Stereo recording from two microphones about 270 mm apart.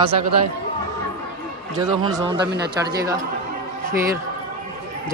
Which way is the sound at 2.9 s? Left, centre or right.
Centre.